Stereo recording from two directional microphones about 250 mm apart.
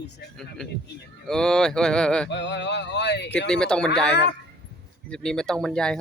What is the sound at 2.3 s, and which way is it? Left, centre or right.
Speech, left.